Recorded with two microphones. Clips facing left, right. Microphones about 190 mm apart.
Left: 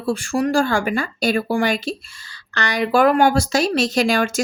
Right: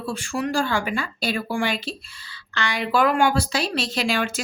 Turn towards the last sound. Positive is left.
turn(degrees=45)  # may be behind; listen again after turning